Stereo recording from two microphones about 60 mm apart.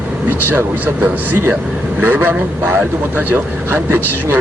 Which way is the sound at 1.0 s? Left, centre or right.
Right.